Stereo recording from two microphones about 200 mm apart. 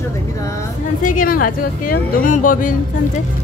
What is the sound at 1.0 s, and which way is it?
Speech, 40° left (ahead or behind).